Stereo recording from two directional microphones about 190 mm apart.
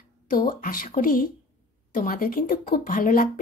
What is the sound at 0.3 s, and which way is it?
Speech, 50° left (ahead or behind).